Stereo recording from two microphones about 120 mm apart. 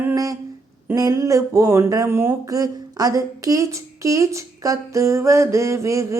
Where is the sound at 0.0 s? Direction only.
25° right (ahead or behind).